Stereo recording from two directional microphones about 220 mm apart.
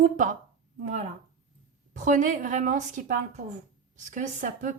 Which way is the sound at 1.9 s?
35° right (ahead or behind).